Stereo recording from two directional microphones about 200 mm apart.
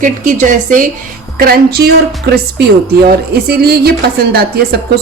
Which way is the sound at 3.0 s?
50° right (ahead or behind).